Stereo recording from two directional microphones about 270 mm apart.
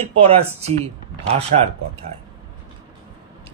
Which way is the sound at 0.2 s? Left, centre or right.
Right.